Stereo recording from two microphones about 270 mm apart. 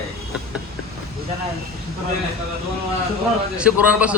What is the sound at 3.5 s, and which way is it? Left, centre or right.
Speech, centre.